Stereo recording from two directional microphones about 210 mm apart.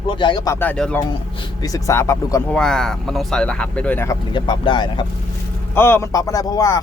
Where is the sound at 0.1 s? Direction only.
20° left (ahead or behind).